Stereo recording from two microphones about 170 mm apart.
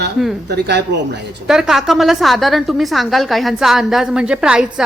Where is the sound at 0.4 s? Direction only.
80° right.